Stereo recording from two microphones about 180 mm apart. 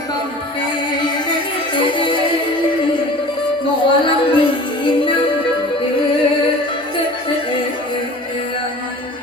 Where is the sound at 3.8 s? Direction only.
30° left (ahead or behind).